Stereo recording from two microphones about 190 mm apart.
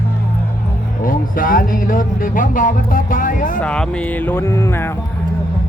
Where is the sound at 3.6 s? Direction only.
5° left (ahead or behind).